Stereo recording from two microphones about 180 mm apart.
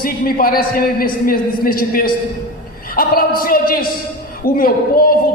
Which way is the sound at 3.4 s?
55° left (ahead or behind).